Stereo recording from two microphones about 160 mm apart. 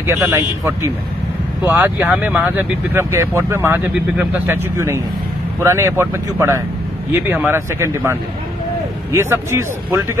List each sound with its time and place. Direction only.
0.0 s speech: 15° right (ahead or behind)